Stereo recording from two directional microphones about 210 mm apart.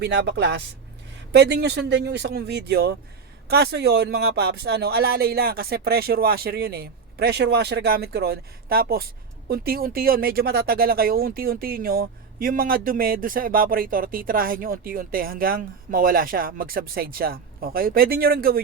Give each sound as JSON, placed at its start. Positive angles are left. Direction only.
{"t": 0.0, "sound": "speech", "side_deg": -50}